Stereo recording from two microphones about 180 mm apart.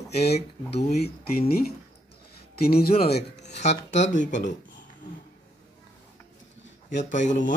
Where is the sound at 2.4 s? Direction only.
60° left (ahead or behind).